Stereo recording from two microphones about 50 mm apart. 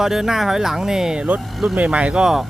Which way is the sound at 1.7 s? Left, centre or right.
Right.